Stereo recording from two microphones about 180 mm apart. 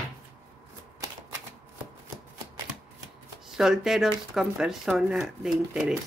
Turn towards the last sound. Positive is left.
turn(degrees=0)  # may be behind; listen again after turning